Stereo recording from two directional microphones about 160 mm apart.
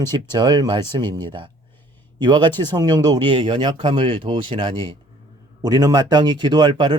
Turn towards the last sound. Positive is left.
turn(degrees=-30)  # may be behind; listen again after turning